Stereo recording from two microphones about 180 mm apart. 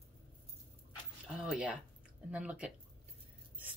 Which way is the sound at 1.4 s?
5° right (ahead or behind).